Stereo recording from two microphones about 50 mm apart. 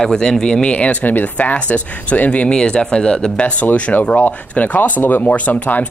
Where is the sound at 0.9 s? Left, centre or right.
Left.